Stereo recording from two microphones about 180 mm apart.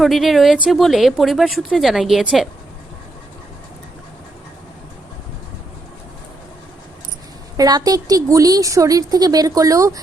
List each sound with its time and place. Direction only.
0.0 s speech: centre (ahead or behind)
7.5 s a woman's voice: 20° right (ahead or behind)